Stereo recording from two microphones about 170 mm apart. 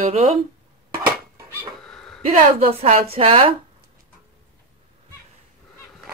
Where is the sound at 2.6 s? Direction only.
35° right (ahead or behind).